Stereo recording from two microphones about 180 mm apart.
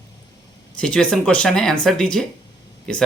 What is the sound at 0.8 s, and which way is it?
Speech, 5° left (ahead or behind).